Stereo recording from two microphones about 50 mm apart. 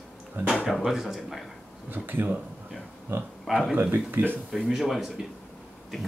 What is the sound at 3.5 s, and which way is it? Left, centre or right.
Speech, centre.